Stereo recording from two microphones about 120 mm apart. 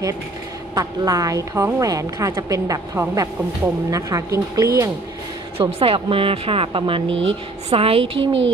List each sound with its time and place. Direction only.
0.7 s a woman's voice: 30° right (ahead or behind)
5.6 s speech: 50° right (ahead or behind)